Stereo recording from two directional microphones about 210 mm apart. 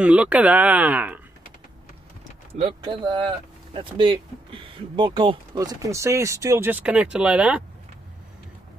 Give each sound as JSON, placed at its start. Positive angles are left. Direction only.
{"t": 0.0, "sound": "speech", "side_deg": -5}
{"t": 2.5, "sound": "speech", "side_deg": -25}